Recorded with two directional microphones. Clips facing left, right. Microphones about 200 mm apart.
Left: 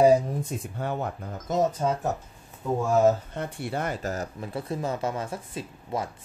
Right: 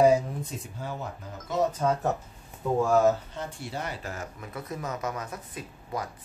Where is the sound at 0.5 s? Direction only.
60° left (ahead or behind).